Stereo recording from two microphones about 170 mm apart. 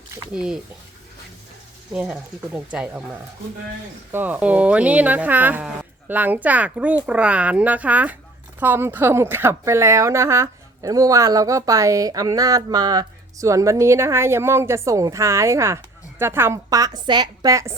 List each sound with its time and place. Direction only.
0.3 s speech: 5° right (ahead or behind)
1.9 s a woman's voice: 5° right (ahead or behind)